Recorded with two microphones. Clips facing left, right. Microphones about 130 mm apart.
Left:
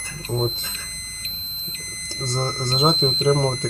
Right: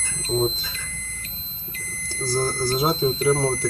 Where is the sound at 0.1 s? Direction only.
15° left (ahead or behind).